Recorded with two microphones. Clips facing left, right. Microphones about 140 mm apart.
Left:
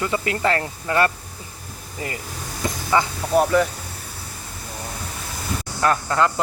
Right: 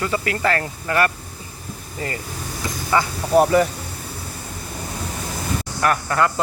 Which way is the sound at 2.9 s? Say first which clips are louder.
Even; 20° left (ahead or behind).